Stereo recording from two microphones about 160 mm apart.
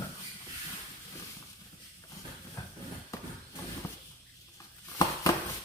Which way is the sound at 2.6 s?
25° left (ahead or behind).